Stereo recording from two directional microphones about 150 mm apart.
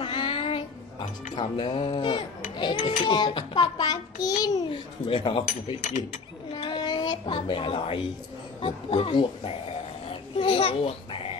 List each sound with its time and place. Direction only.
0.0 s child singing: 35° left (ahead or behind)
1.3 s a child's voice: 35° left (ahead or behind)
5.0 s speech: 35° left (ahead or behind)
6.5 s a sound: 35° left (ahead or behind)
8.5 s speech: 35° left (ahead or behind)
10.4 s a sound: 40° left (ahead or behind)